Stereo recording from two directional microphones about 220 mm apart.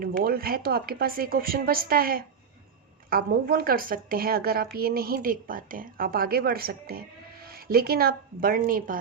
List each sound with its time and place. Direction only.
0.2 s a woman's voice: 40° right (ahead or behind)